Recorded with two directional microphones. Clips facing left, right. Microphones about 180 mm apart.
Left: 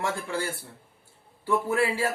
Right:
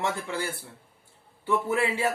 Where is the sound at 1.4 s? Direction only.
20° right (ahead or behind).